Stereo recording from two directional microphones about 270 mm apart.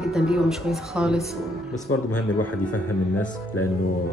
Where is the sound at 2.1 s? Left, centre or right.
Left.